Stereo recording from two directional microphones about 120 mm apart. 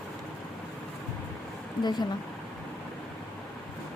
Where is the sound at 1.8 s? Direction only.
35° left (ahead or behind).